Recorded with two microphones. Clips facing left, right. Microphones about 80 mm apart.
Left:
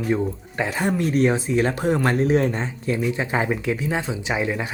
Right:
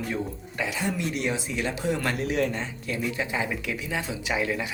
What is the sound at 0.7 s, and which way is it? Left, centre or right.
Speech, left.